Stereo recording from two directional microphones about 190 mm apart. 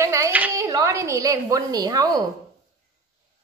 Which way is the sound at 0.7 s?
20° right (ahead or behind).